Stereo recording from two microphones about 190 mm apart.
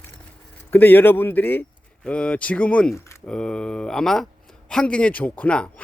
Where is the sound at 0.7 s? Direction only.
10° left (ahead or behind).